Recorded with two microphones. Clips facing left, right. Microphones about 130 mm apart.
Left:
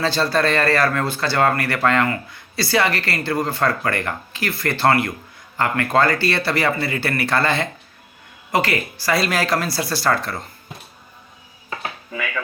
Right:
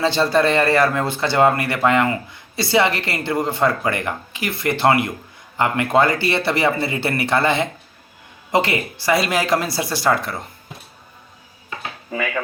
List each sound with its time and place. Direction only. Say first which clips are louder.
0.0 s speech: right 2 dB; 20° right (ahead or behind)
12.1 s speech: right 5 dB; 40° right (ahead or behind)